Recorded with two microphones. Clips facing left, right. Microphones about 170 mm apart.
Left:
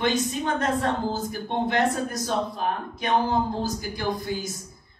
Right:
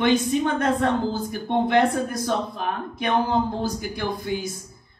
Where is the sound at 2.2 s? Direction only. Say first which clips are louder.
Right 1 dB; 55° right (ahead or behind).